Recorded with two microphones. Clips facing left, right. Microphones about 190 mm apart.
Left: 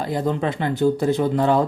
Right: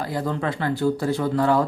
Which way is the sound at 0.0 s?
20° left (ahead or behind).